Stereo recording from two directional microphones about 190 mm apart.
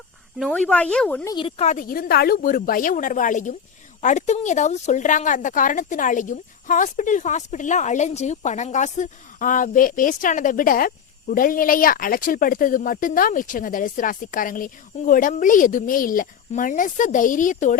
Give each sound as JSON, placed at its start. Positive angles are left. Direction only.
{"t": 0.3, "sound": "speech", "side_deg": 0}
{"t": 1.3, "sound": "a woman's voice", "side_deg": 25}